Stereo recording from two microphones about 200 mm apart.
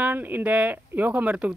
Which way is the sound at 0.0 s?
10° right (ahead or behind).